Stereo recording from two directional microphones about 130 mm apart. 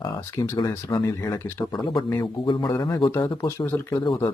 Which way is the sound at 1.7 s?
35° left (ahead or behind).